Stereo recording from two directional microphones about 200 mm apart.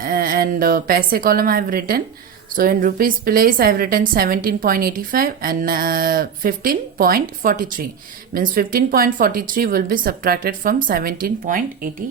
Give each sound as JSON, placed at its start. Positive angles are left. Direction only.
{"t": 0.0, "sound": "a woman's voice", "side_deg": -45}